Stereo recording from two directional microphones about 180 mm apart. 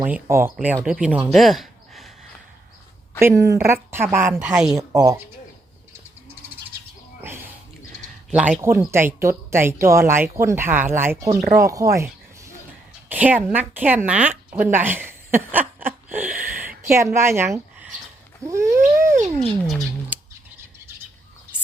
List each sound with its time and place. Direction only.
0.0 s speech: 10° right (ahead or behind)
3.2 s a woman's voice: 15° right (ahead or behind)
4.8 s speech: 20° right (ahead or behind)
8.3 s speech: 5° right (ahead or behind)
11.6 s a sound: 20° right (ahead or behind)
13.1 s a woman's voice: 10° right (ahead or behind)
19.1 s a sound: 40° right (ahead or behind)
20.1 s bird: 10° right (ahead or behind)